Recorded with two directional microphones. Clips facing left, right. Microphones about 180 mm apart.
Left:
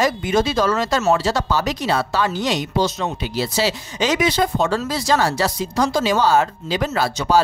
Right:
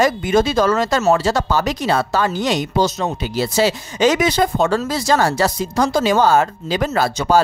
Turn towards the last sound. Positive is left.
turn(degrees=-50)  # may be behind; listen again after turning